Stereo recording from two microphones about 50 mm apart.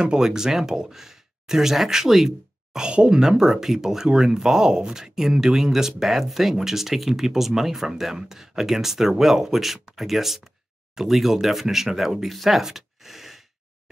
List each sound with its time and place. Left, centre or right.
0.0 s speech: centre
2.9 s speech: right
3.2 s speech: centre